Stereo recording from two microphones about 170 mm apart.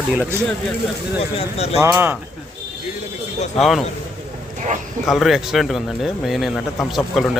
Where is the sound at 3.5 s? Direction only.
Centre (ahead or behind).